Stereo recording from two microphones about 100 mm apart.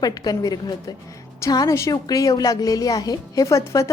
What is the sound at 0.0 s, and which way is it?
A woman's voice, 40° left (ahead or behind).